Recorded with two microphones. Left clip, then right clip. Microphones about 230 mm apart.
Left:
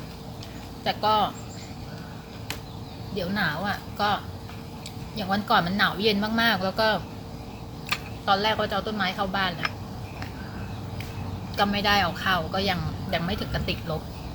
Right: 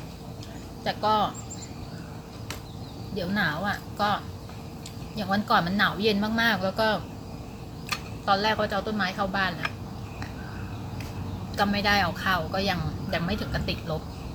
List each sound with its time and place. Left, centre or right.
0.9 s speech: centre
3.2 s speech: centre
8.2 s speech: centre
11.5 s speech: centre